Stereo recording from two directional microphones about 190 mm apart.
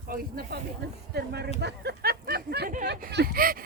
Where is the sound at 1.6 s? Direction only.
60° right (ahead or behind).